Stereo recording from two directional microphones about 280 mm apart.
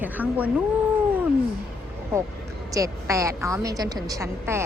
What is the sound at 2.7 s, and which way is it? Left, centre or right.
A woman's voice, centre.